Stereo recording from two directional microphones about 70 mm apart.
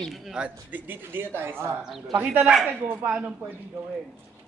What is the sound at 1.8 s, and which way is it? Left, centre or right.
Speech, centre.